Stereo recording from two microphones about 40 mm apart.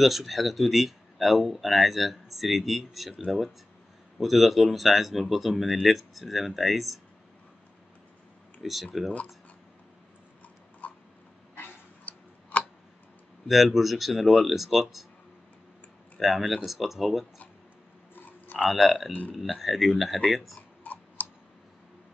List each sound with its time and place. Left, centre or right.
0.0 s speech: centre
8.6 s speech: centre
10.8 s a sound: left
12.0 s tick-tock: left
13.7 s speech: centre
16.2 s speech: centre
18.1 s a sound: left
18.7 s speech: centre
20.8 s clicking: left